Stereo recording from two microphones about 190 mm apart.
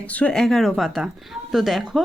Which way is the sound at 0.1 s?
5° left (ahead or behind).